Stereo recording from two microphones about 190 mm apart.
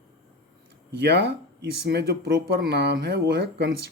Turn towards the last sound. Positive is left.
turn(degrees=-55)  # may be behind; listen again after turning